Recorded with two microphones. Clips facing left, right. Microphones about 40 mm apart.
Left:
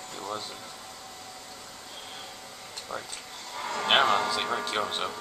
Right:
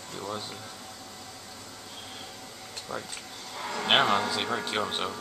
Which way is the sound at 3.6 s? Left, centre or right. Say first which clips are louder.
Left 1 dB; centre.